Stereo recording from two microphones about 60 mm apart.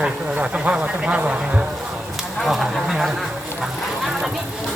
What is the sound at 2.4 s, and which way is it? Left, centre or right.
Speech, centre.